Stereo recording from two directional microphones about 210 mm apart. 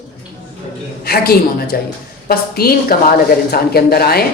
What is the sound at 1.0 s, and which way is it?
A woman's voice, 50° left (ahead or behind).